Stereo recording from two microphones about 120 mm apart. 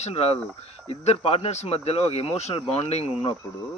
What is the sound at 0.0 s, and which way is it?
Speech, 60° left (ahead or behind).